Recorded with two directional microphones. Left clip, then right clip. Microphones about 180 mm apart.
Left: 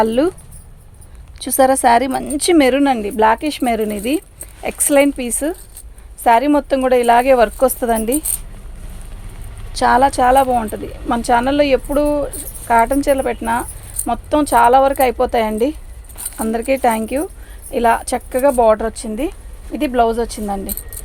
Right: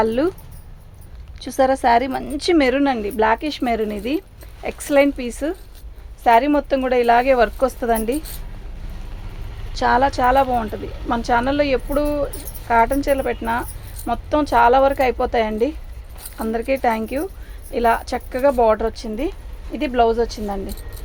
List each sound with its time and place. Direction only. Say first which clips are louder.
0.0 s a woman's voice: left 4 dB; 40° left (ahead or behind)
1.4 s a woman's voice: left 4 dB; 40° left (ahead or behind)
9.7 s a woman's voice: left 4 dB; 40° left (ahead or behind)